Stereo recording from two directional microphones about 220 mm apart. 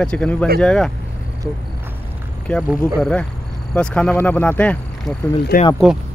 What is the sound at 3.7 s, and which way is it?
Speech, 5° left (ahead or behind).